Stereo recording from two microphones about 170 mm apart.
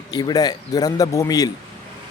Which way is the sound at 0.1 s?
25° left (ahead or behind).